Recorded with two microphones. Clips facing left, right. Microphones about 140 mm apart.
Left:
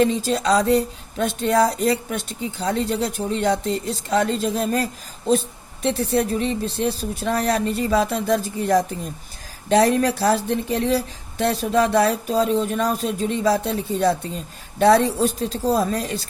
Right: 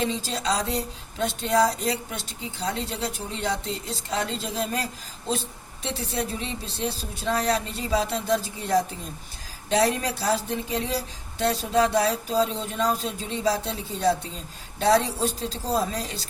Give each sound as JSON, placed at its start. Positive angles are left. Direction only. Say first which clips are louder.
{"t": 0.0, "sound": "speech", "louder": "left 8 dB", "side_deg": 55}